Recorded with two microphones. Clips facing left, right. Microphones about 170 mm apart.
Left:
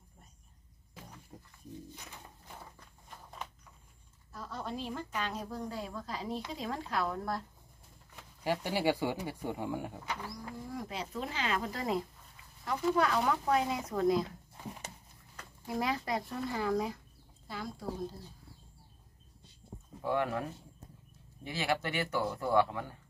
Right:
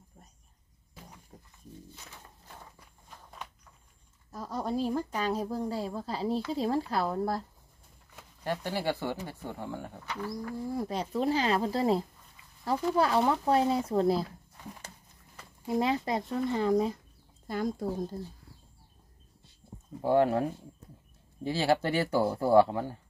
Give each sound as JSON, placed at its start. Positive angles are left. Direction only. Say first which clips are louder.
{"t": 1.3, "sound": "dog", "louder": "left 2 dB", "side_deg": 0}
{"t": 2.0, "sound": "a sound", "louder": "left 1 dB", "side_deg": 15}
{"t": 4.3, "sound": "speech", "louder": "right 7 dB", "side_deg": -40}
{"t": 8.5, "sound": "speech", "louder": "left 1 dB", "side_deg": 10}
{"t": 10.7, "sound": "speech", "louder": "right 7 dB", "side_deg": -35}
{"t": 15.6, "sound": "speech", "louder": "right 6 dB", "side_deg": -25}
{"t": 17.5, "sound": "speech", "louder": "right 10 dB", "side_deg": -50}
{"t": 20.0, "sound": "speech", "louder": "right 8 dB", "side_deg": -30}
{"t": 21.5, "sound": "speech", "louder": "right 7 dB", "side_deg": -30}